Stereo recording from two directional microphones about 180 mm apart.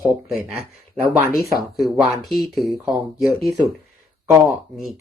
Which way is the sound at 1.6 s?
Centre (ahead or behind).